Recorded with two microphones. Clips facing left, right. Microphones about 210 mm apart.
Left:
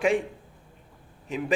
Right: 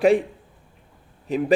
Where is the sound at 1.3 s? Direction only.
35° right (ahead or behind).